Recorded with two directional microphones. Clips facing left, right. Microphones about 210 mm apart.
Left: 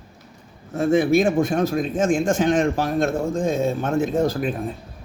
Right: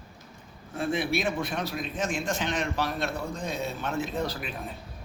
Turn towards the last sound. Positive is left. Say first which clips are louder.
# left 11 dB
turn(degrees=50)  # may be behind; listen again after turning